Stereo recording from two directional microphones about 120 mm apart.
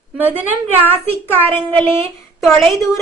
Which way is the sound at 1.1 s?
15° left (ahead or behind).